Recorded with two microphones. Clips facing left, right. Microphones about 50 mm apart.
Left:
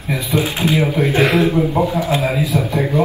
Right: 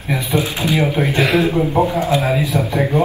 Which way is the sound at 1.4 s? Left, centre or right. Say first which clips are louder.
Even; right.